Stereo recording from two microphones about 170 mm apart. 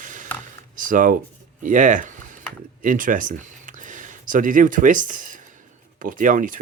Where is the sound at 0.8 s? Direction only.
50° right (ahead or behind).